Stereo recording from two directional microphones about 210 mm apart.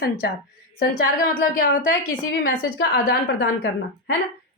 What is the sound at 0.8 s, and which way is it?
A woman's voice, 40° left (ahead or behind).